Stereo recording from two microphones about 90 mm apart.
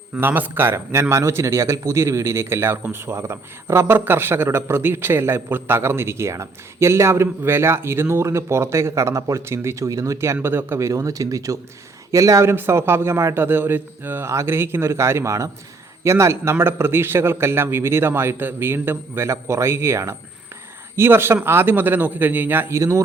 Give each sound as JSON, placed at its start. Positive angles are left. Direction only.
{"t": 0.2, "sound": "speech", "side_deg": -20}
{"t": 10.4, "sound": "speech", "side_deg": -25}
{"t": 10.8, "sound": "speech", "side_deg": -40}